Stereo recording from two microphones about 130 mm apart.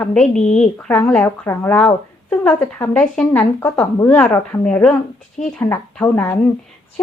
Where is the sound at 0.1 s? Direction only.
5° left (ahead or behind).